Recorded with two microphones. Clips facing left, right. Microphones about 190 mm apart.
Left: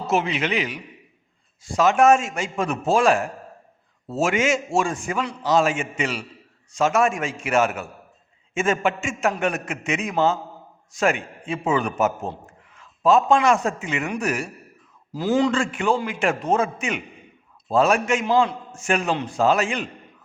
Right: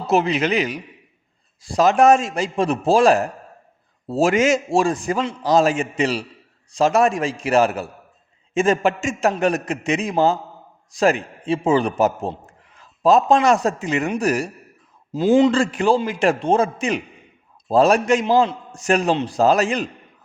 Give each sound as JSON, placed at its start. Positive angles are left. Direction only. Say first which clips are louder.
{"t": 0.1, "sound": "a man's voice", "louder": "right 5 dB", "side_deg": -40}
{"t": 15.1, "sound": "a man's voice", "louder": "right 6 dB", "side_deg": -25}
{"t": 15.5, "sound": "a man's voice", "louder": "right 4 dB", "side_deg": -35}